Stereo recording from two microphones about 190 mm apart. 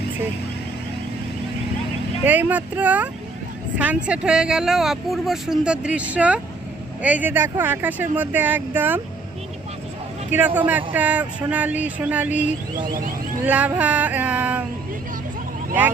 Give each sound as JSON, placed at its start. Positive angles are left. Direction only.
{"t": 2.2, "sound": "speech", "side_deg": -10}
{"t": 10.3, "sound": "speech", "side_deg": -10}
{"t": 12.8, "sound": "speech", "side_deg": -45}
{"t": 13.4, "sound": "speech", "side_deg": -10}